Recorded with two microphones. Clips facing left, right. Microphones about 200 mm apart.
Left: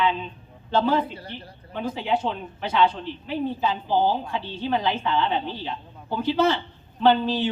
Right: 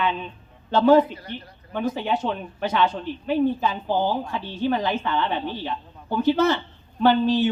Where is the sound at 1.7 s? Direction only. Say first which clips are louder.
Right 1 dB; 45° right (ahead or behind).